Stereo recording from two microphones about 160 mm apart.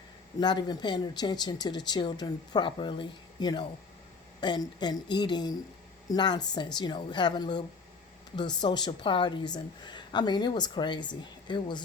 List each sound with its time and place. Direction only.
0.3 s speech: 25° left (ahead or behind)